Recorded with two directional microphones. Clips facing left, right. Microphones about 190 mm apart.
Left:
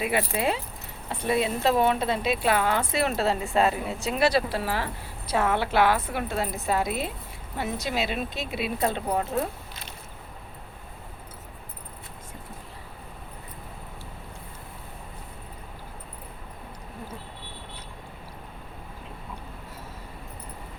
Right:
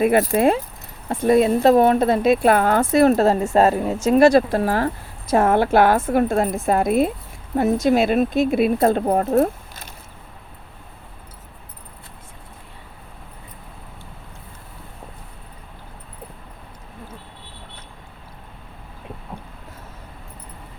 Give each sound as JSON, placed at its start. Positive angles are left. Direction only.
{"t": 0.0, "sound": "speech", "side_deg": -45}